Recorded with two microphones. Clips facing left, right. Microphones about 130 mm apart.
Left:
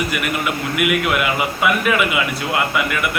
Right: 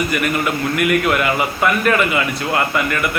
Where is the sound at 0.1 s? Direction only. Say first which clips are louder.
Right 3 dB; 5° left (ahead or behind).